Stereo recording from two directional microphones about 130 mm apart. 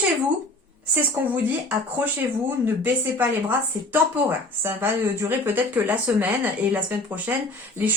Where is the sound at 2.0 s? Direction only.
15° right (ahead or behind).